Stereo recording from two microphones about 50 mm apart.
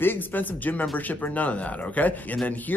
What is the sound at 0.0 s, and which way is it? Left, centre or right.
Speech, left.